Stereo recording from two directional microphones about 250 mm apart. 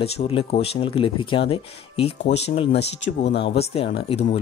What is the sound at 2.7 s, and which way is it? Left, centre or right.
Speech, left.